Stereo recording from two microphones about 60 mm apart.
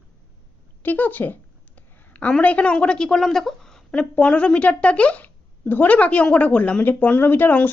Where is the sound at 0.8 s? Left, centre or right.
Left.